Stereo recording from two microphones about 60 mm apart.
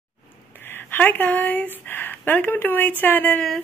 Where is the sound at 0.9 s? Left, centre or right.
Left.